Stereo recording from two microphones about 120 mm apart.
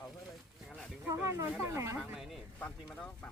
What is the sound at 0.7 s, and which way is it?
Speech, 5° left (ahead or behind).